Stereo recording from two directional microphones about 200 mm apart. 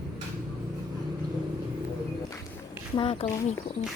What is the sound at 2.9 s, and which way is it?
Speech, 25° left (ahead or behind).